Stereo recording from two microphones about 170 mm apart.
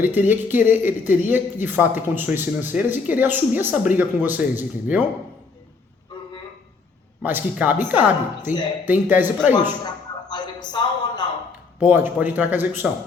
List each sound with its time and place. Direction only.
0.0 s a man's voice: 10° right (ahead or behind)
7.2 s a man's voice: 10° right (ahead or behind)
8.5 s speech: 50° left (ahead or behind)
8.8 s a man's voice: 10° right (ahead or behind)
9.6 s a sound: 25° left (ahead or behind)
11.9 s a man's voice: 10° right (ahead or behind)